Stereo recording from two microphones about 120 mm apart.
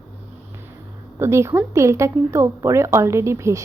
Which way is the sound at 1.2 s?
25° right (ahead or behind).